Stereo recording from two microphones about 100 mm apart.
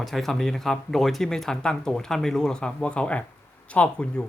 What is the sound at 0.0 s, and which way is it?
Speech, centre (ahead or behind).